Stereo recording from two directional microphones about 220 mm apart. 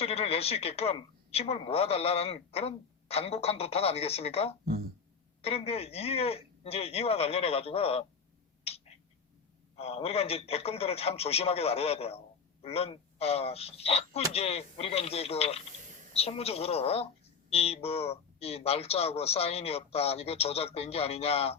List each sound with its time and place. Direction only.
0.0 s a woman's voice: 25° left (ahead or behind)
4.6 s speech: 45° right (ahead or behind)
5.4 s a woman's voice: 25° left (ahead or behind)
9.7 s a woman's voice: 25° left (ahead or behind)